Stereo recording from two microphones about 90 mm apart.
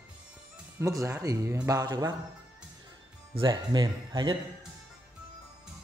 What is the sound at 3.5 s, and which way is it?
Speech, 50° right (ahead or behind).